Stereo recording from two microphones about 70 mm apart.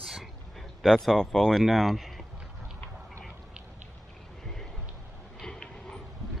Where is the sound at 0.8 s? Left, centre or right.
Centre.